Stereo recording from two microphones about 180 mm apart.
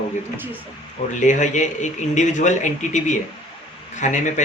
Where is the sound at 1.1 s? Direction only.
45° left (ahead or behind).